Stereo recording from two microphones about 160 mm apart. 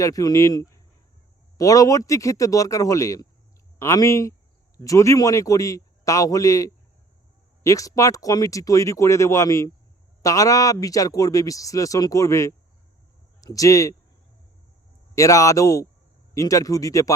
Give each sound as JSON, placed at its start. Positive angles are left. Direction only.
{"t": 0.0, "sound": "a man's voice", "side_deg": 20}
{"t": 15.1, "sound": "a man's voice", "side_deg": 20}